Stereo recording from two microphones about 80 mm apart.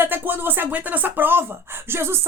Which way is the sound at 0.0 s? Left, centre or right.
Right.